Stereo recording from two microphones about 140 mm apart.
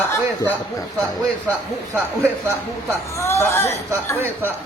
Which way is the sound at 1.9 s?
15° right (ahead or behind).